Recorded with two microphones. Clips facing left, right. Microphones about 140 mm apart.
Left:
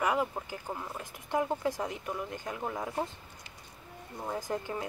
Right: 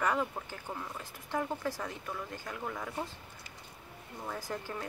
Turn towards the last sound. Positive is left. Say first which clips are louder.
# left 4 dB
turn(degrees=20)  # may be behind; listen again after turning